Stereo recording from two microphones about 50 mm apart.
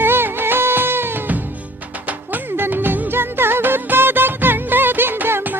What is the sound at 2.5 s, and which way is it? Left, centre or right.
Music, right.